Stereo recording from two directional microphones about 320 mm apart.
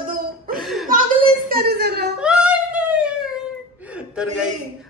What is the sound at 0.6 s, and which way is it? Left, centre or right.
Chuckle, centre.